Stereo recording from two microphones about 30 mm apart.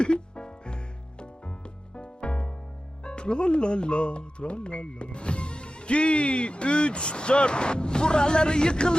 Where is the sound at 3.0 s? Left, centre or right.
Left.